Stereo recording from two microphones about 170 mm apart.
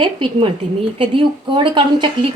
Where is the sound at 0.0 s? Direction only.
30° right (ahead or behind).